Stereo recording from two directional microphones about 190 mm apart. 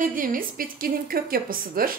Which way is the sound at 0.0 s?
45° right (ahead or behind).